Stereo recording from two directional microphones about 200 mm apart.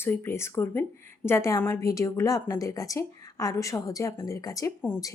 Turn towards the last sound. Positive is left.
turn(degrees=15)  # may be behind; listen again after turning